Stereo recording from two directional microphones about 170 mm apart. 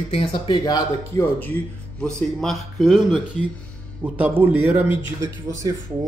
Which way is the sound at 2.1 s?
Centre (ahead or behind).